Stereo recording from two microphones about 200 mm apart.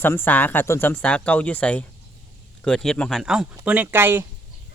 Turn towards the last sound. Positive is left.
turn(degrees=-10)  # may be behind; listen again after turning